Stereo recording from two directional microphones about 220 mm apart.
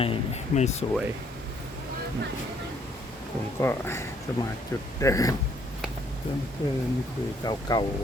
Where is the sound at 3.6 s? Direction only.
10° left (ahead or behind).